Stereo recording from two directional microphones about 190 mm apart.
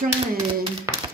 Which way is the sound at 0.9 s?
15° right (ahead or behind).